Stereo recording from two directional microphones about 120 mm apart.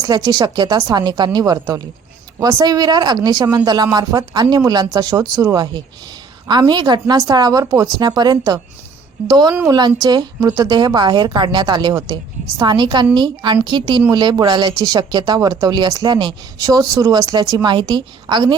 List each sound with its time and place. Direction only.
0.0 s a woman's voice: 35° right (ahead or behind)